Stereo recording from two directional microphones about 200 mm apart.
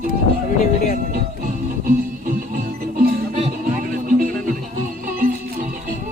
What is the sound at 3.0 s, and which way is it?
Music, 45° right (ahead or behind).